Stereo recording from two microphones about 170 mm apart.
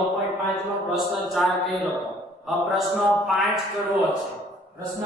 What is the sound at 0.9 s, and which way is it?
Speech, centre (ahead or behind).